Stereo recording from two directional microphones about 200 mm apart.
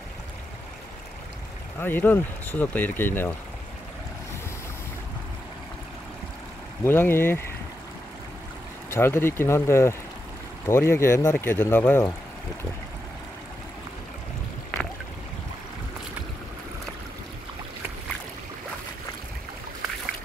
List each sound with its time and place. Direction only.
1.8 s speech: 10° left (ahead or behind)
6.8 s speech: 10° left (ahead or behind)
8.9 s speech: 10° left (ahead or behind)